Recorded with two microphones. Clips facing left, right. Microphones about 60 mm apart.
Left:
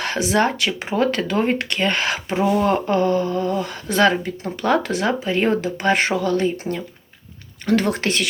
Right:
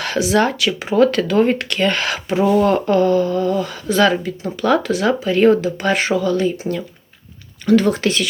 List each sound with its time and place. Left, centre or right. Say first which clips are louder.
0.0 s speech: right 2 dB; left
3.8 s speech: right 2 dB; left; by 5.5 s centre
5.6 s speech: right 1 dB; left
7.6 s speech: right 5 dB; left